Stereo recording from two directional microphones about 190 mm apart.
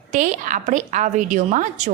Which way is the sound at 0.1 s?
40° right (ahead or behind).